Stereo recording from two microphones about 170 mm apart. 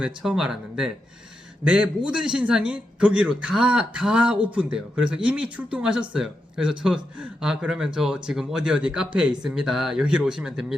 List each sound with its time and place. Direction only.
0.0 s a man's voice: 5° right (ahead or behind)